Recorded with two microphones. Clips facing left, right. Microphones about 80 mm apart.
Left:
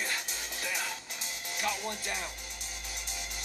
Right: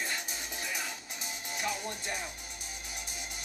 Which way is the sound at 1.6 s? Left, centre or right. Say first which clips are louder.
Left 2 dB; centre.